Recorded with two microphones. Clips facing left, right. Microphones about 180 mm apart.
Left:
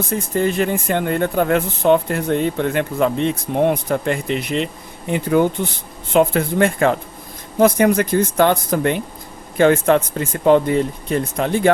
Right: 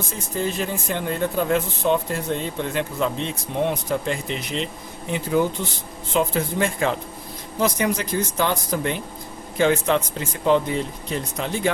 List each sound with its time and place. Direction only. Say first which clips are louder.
0.0 s speech: left 7 dB; 60° left (ahead or behind)